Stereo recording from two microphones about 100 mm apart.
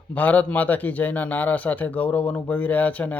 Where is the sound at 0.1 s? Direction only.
15° left (ahead or behind).